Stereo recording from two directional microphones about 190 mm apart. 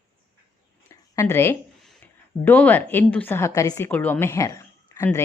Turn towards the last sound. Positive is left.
turn(degrees=15)  # may be behind; listen again after turning